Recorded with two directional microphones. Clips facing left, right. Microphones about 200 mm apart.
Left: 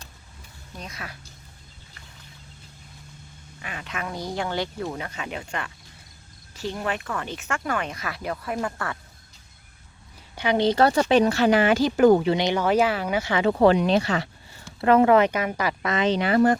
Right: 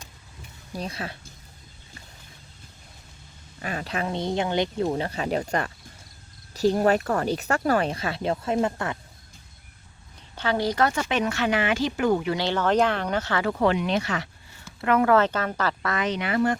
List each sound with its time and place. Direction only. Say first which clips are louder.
0.7 s speech: right 6 dB; 35° right (ahead or behind)
3.6 s speech: right 5 dB; 40° right (ahead or behind); by 9.0 s 20° right (ahead or behind)
10.3 s speech: left 4 dB; 15° left (ahead or behind); by 12.2 s 40° left (ahead or behind)
12.2 s speech: left 2 dB; 20° left (ahead or behind)
13.4 s speech: left 7 dB; 35° left (ahead or behind)
15.1 s speech: left 2 dB; 15° left (ahead or behind); by 16.6 s 40° left (ahead or behind)